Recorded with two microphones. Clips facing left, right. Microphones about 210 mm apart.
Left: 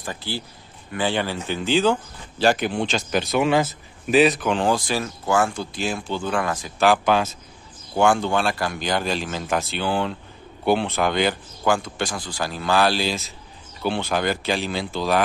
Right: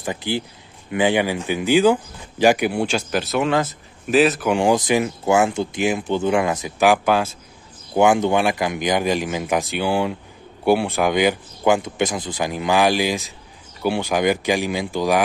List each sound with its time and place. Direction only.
0.0 s speech: 20° right (ahead or behind)
7.9 s speech: 20° right (ahead or behind)